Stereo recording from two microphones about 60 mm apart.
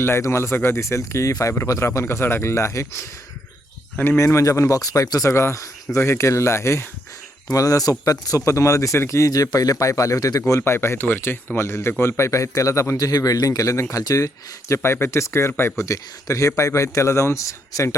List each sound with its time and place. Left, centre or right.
0.2 s speech: left
1.8 s speech: left
4.2 s speech: left
7.5 s speech: left
10.4 s speech: left
14.7 s speech: left